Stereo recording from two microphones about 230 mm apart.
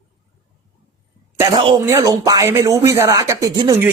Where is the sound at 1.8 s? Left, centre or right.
Centre.